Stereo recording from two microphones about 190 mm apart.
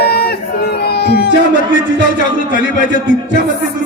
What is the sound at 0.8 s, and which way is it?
Music, 60° left (ahead or behind).